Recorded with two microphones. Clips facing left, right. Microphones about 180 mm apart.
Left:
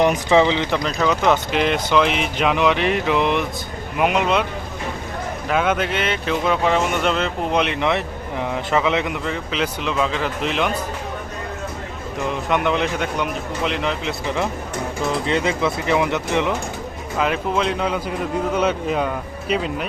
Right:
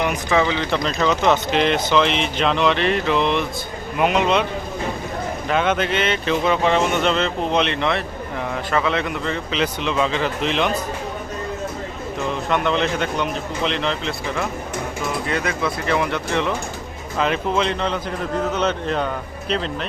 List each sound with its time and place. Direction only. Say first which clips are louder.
0.0 s speech: left 4 dB; 25° left (ahead or behind)
0.7 s a man's voice: even; 10° left (ahead or behind)
5.5 s a man's voice: even; 5° left (ahead or behind)
12.5 s speech: even; 15° left (ahead or behind)
15.3 s speech: left 3 dB; 25° left (ahead or behind)
17.2 s speech: even; 5° left (ahead or behind)